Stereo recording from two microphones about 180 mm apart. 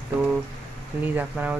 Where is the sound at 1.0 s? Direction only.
10° right (ahead or behind).